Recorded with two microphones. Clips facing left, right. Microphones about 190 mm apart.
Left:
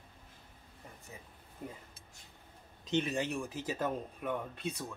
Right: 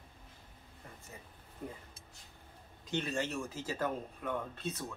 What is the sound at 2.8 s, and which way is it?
Speech, 20° left (ahead or behind).